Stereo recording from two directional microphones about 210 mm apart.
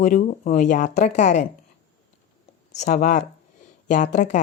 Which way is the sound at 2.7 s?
35° left (ahead or behind).